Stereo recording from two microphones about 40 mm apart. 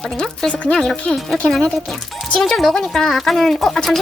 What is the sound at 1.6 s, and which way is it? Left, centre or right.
Speech, centre.